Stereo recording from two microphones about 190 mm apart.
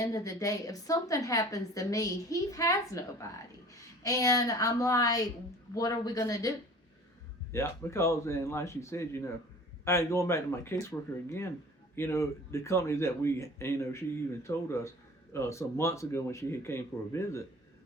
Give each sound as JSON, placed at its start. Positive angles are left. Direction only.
{"t": 0.0, "sound": "a woman's voice", "side_deg": 20}
{"t": 7.5, "sound": "a woman's voice", "side_deg": 15}
{"t": 11.9, "sound": "a woman's voice", "side_deg": 15}